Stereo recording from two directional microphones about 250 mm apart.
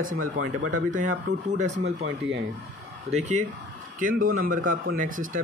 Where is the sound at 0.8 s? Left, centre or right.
Right.